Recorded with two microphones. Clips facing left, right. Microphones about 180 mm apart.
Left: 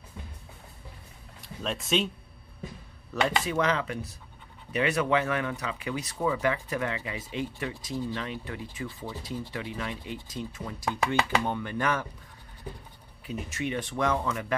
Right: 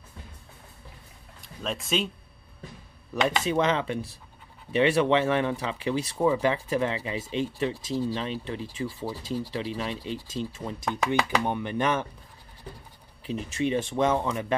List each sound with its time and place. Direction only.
1.4 s speech: centre (ahead or behind)
3.1 s speech: 15° right (ahead or behind)
3.4 s speech: 25° right (ahead or behind)
13.3 s speech: 30° right (ahead or behind)